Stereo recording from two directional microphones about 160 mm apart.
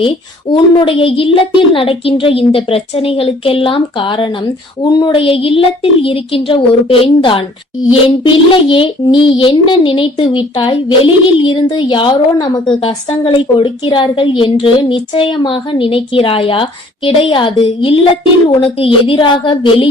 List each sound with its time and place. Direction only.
0.0 s a woman's voice: 30° left (ahead or behind)